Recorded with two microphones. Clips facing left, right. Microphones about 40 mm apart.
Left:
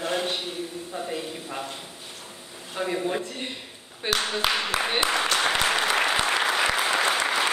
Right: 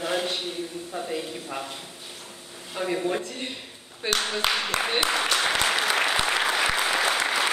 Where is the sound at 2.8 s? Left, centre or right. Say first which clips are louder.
Even; centre.